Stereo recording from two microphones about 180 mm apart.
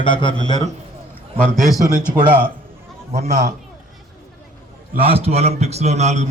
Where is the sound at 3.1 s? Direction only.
40° right (ahead or behind).